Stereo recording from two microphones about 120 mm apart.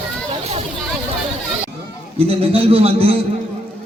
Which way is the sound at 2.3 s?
50° right (ahead or behind).